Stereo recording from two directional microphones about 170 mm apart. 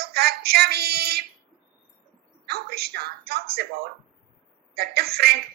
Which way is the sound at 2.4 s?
65° right (ahead or behind).